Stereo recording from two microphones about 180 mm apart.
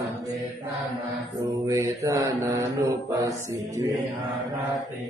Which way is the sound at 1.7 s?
15° right (ahead or behind).